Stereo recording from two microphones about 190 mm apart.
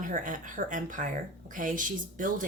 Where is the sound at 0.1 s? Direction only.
45° right (ahead or behind).